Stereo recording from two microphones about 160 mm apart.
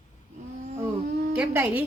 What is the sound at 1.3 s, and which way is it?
Speech, 10° right (ahead or behind).